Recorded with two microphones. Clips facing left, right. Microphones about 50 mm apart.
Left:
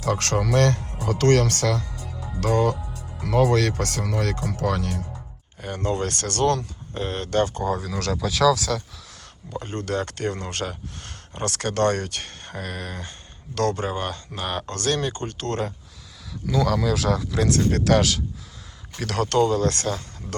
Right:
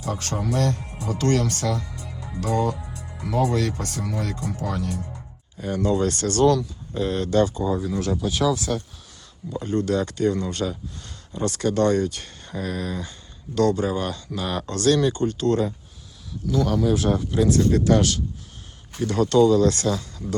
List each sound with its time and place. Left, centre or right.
0.0 s speech: left
5.5 s speech: left
7.5 s speech: left
9.5 s speech: left
16.7 s speech: left
17.7 s speech: left
18.9 s speech: left
19.2 s speech: left